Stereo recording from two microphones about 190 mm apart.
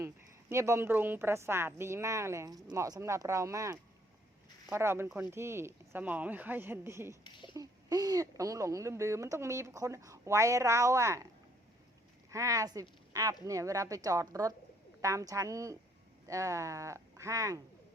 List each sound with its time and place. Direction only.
0.0 s speech: 15° right (ahead or behind)
12.3 s speech: 15° right (ahead or behind)